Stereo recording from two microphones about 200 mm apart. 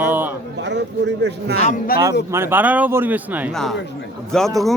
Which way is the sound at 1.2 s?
55° right (ahead or behind).